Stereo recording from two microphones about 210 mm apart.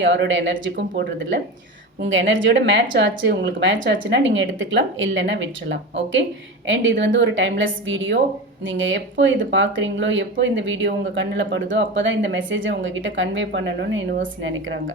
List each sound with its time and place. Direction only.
0.0 s speech: 60° right (ahead or behind)